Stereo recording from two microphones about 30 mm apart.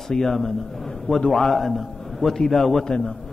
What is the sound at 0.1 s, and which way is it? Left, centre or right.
A man's voice, centre.